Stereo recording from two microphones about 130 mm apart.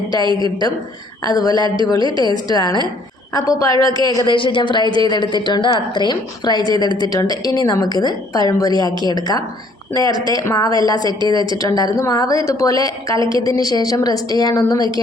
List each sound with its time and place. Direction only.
0.1 s a woman's voice: 35° right (ahead or behind)
1.4 s a woman's voice: 30° left (ahead or behind)
4.4 s a woman's voice: 40° left (ahead or behind)